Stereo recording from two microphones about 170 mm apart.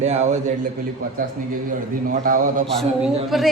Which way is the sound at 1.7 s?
55° right (ahead or behind).